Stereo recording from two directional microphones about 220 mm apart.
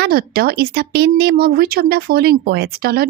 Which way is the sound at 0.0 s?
45° right (ahead or behind).